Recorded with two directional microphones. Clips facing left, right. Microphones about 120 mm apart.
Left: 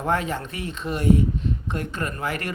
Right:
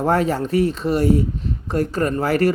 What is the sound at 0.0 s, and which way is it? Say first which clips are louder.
Speech: right 6 dB; 35° right (ahead or behind).